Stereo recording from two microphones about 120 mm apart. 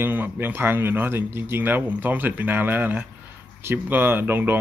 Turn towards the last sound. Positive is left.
turn(degrees=-15)  # may be behind; listen again after turning